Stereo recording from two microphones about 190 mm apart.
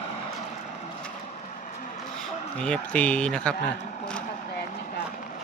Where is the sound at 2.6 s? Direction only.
5° left (ahead or behind).